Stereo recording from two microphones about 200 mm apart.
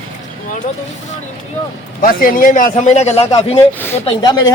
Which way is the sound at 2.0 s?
45° left (ahead or behind).